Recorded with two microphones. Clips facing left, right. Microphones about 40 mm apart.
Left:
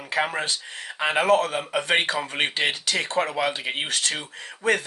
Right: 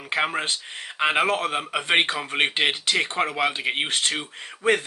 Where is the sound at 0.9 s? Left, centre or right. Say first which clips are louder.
Left 2 dB; right.